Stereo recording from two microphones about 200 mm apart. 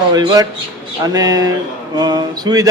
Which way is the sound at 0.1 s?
20° right (ahead or behind).